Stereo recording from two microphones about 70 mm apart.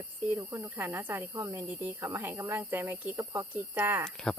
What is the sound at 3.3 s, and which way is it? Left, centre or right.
Speech, right.